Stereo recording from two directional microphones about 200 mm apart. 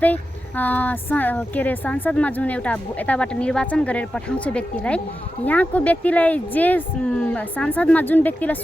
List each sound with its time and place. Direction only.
0.0 s speech: 10° left (ahead or behind)